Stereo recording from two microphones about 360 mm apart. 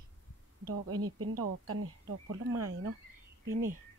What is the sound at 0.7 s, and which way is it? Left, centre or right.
Speech, right.